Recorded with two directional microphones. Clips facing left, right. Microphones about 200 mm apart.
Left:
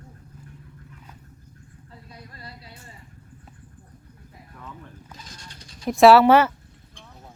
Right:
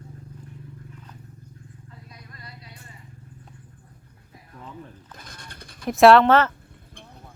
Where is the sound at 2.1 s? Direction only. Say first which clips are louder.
Left 5 dB; 30° left (ahead or behind).